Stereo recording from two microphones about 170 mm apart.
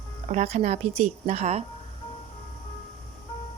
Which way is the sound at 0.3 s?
40° right (ahead or behind).